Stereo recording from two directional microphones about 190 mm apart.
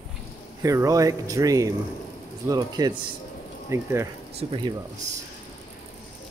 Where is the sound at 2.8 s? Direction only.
20° right (ahead or behind).